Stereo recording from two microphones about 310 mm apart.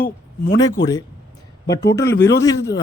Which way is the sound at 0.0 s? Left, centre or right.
Left.